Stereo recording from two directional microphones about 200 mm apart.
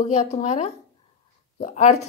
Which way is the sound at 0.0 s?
35° left (ahead or behind).